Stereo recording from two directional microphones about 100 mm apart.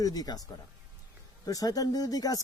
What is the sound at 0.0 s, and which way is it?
Speech, 40° left (ahead or behind).